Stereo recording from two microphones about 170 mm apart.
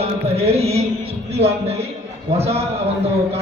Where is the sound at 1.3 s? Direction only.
35° right (ahead or behind).